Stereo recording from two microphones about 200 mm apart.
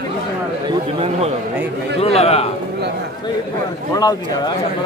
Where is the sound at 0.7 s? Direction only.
30° right (ahead or behind).